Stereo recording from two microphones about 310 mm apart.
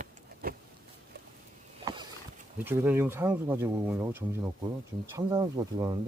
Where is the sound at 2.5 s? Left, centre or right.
Centre.